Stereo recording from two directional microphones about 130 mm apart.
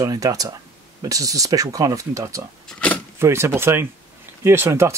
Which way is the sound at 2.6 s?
10° left (ahead or behind).